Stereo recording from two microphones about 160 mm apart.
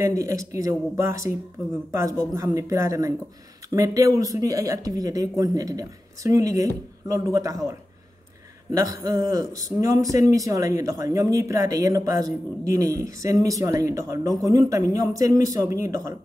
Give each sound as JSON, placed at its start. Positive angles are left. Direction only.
{"t": 0.0, "sound": "speech", "side_deg": -20}
{"t": 2.3, "sound": "speech", "side_deg": -20}
{"t": 8.7, "sound": "speech", "side_deg": -20}